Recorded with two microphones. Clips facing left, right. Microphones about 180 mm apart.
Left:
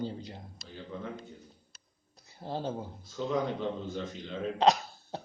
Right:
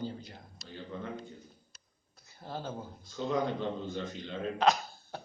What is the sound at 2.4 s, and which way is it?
Speech, 30° left (ahead or behind).